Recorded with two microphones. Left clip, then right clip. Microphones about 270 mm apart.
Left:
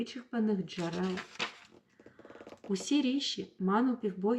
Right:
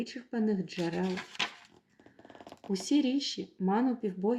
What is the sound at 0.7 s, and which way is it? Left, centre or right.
Speech, right.